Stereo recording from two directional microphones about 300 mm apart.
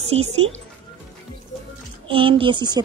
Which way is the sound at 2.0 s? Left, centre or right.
Centre.